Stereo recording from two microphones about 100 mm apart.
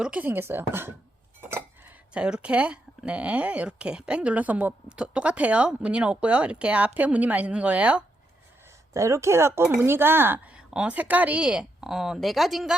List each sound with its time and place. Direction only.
0.0 s speech: 15° right (ahead or behind)
1.4 s cutlery: 25° right (ahead or behind)
2.1 s speech: 10° right (ahead or behind)
8.9 s speech: 30° right (ahead or behind); by 12.7 s centre (ahead or behind)